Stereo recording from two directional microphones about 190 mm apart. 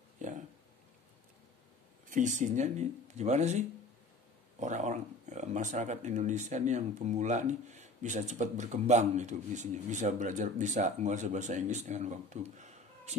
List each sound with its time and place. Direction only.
2.0 s speech: 40° right (ahead or behind)